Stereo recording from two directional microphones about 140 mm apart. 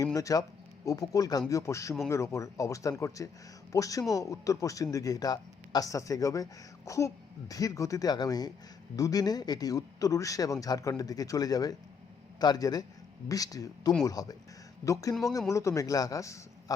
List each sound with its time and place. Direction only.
0.0 s speech: 25° left (ahead or behind)